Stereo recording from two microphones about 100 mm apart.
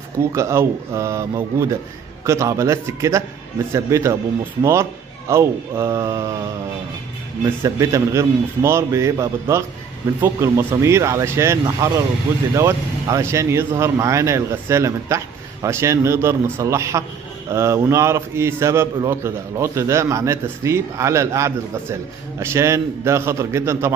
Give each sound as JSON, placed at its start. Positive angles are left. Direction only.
{"t": 0.3, "sound": "speech", "side_deg": -25}
{"t": 5.3, "sound": "a man's voice", "side_deg": -25}
{"t": 7.6, "sound": "a man's voice", "side_deg": -35}